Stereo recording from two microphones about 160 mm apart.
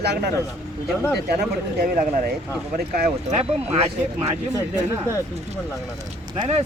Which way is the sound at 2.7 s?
70° right (ahead or behind).